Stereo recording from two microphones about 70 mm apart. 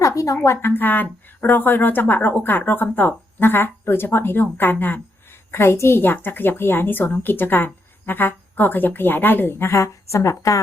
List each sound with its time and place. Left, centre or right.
0.0 s a sound: left
0.4 s a woman's voice: left
0.7 s a woman's voice: left